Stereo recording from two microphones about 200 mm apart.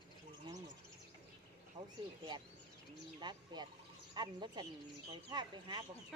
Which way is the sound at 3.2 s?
20° right (ahead or behind).